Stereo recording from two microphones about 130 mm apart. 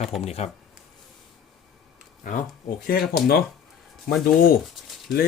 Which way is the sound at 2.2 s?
90° left.